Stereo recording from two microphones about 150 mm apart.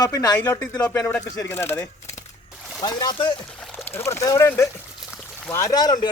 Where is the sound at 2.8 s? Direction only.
25° left (ahead or behind).